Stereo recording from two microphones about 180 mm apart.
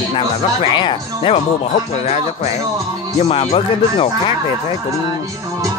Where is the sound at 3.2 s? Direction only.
35° left (ahead or behind).